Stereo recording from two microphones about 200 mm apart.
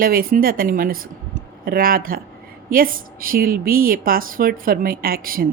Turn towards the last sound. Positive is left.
turn(degrees=-45)  # may be behind; listen again after turning